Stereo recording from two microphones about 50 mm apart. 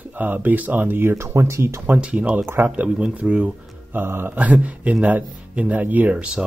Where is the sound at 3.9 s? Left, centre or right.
Right.